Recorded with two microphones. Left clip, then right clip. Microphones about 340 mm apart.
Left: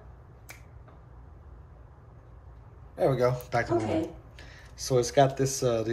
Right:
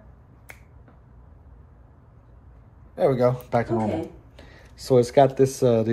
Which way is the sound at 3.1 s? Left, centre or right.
Centre.